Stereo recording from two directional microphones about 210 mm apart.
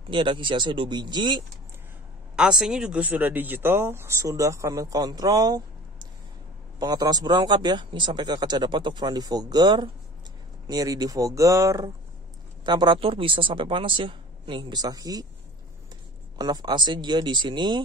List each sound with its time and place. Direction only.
0.1 s speech: 25° right (ahead or behind)
2.3 s speech: 5° right (ahead or behind)
16.3 s speech: 20° right (ahead or behind)